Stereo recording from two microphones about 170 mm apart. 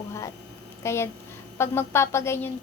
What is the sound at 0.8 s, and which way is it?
Child singing, 15° left (ahead or behind).